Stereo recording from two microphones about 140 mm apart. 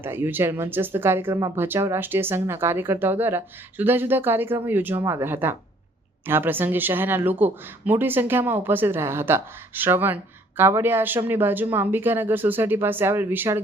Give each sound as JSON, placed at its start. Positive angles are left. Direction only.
{"t": 0.0, "sound": "speech", "side_deg": -15}